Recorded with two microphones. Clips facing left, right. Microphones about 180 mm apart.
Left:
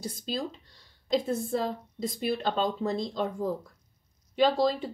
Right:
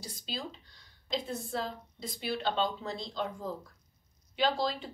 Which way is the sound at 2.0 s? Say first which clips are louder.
Left 6 dB; 50° left (ahead or behind).